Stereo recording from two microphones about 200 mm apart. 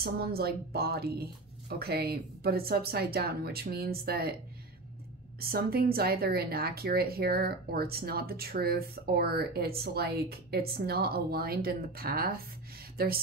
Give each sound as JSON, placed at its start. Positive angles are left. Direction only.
{"t": 0.0, "sound": "speech", "side_deg": -50}
{"t": 5.4, "sound": "speech", "side_deg": -50}